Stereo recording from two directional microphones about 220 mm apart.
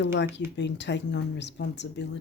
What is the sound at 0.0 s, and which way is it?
Speech, 55° left (ahead or behind).